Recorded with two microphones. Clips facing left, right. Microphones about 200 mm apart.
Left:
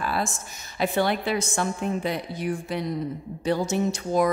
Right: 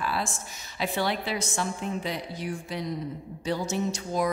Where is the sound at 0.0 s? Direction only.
50° left (ahead or behind).